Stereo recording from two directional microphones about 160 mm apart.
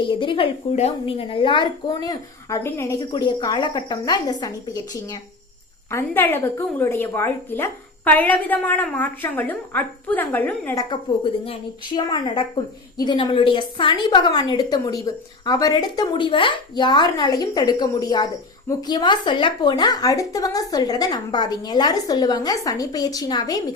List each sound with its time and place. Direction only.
0.0 s a woman's voice: 30° left (ahead or behind); by 10.8 s 10° left (ahead or behind)
10.8 s a woman's voice: 30° left (ahead or behind)